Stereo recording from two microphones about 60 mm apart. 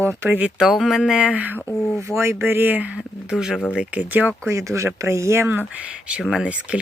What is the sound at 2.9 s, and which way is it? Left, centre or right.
Speech, centre.